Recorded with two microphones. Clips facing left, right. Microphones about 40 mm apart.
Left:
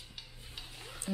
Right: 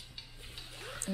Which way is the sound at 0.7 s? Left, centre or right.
Centre.